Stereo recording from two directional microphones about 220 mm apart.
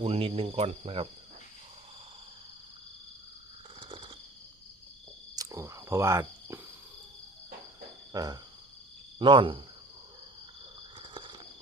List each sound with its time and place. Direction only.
0.0 s speech: 25° right (ahead or behind)
3.8 s a sound: 25° right (ahead or behind)
5.4 s cricket: 15° right (ahead or behind)
8.1 s a sound: 20° right (ahead or behind)
9.1 s speech: 20° right (ahead or behind)
11.0 s cricket: 20° right (ahead or behind)